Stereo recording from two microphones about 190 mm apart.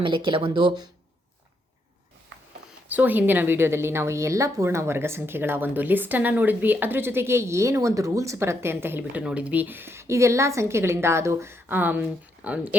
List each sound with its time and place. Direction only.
0.0 s speech: 25° right (ahead or behind)
2.9 s a woman's voice: 10° right (ahead or behind)